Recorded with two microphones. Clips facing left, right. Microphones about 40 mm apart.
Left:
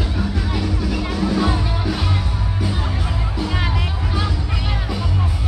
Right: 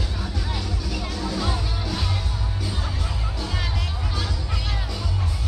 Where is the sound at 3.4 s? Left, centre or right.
Left.